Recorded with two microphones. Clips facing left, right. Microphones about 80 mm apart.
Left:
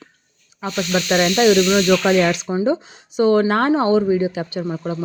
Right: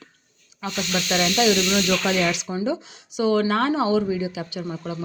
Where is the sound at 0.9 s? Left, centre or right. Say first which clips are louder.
Left 5 dB; left.